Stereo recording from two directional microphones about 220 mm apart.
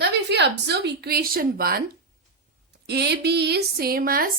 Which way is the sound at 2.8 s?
50° right (ahead or behind).